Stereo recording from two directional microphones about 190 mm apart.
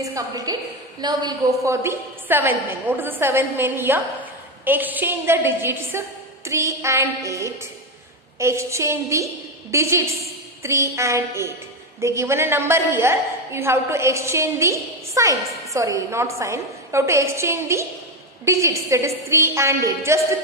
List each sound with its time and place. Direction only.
0.0 s a woman's voice: 20° right (ahead or behind)